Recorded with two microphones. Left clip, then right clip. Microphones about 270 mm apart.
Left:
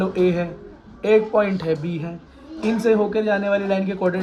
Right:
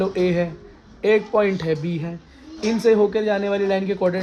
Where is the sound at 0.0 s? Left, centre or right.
Right.